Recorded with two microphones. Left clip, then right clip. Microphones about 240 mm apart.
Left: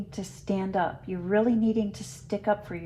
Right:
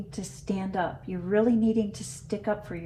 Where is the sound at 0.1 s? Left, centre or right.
Left.